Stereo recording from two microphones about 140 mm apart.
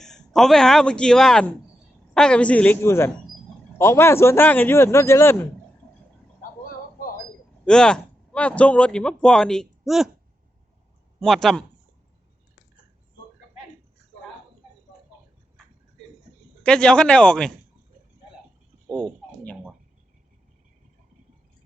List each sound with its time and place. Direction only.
0.0 s speech: 5° left (ahead or behind); by 5.4 s 20° left (ahead or behind)
7.6 s a man's voice: 5° left (ahead or behind)
11.2 s speech: centre (ahead or behind)
16.6 s speech: 5° left (ahead or behind)
18.9 s speech: 5° left (ahead or behind)